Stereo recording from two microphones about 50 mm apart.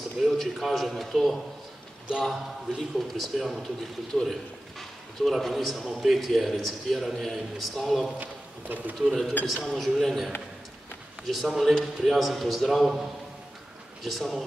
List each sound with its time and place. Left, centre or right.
0.2 s a man's voice: centre
8.2 s speech: right
9.5 s a man's voice: centre
14.0 s a man's voice: centre